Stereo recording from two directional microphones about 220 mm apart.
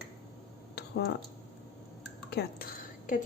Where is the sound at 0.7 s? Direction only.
50° left (ahead or behind).